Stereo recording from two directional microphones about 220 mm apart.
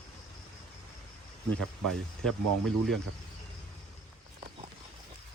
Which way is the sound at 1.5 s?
Centre (ahead or behind).